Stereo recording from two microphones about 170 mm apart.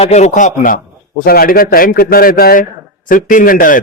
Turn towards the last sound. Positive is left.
turn(degrees=55)  # may be behind; listen again after turning